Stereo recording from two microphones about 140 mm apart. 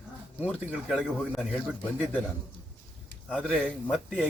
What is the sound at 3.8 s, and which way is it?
Speech, centre (ahead or behind).